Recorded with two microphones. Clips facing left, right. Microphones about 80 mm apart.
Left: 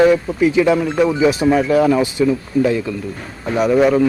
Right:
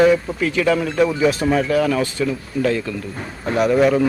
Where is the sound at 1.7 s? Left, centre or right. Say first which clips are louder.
Left 4 dB; left.